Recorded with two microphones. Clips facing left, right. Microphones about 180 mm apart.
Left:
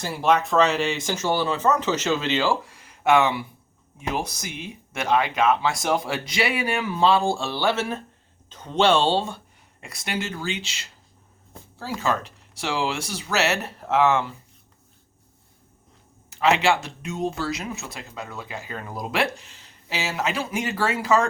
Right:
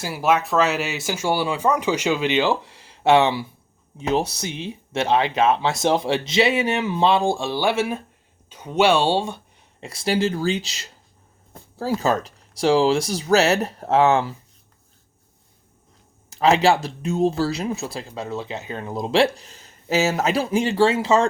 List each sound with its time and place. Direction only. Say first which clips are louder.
0.0 s speech: right 1 dB; 5° right (ahead or behind)
9.8 s speech: right 9 dB; 30° right (ahead or behind)
16.3 s speech: right 4 dB; 40° right (ahead or behind)